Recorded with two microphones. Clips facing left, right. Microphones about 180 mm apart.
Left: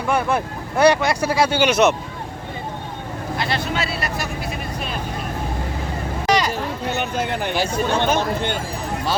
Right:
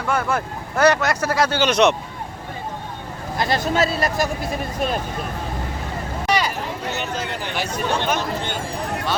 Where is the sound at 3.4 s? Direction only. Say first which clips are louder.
Right 5 dB; 45° right (ahead or behind).